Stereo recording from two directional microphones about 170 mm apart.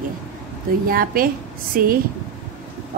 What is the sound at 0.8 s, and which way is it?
A woman's voice, 55° right (ahead or behind).